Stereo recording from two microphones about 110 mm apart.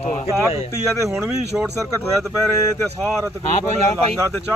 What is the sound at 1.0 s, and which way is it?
Speech, 25° right (ahead or behind).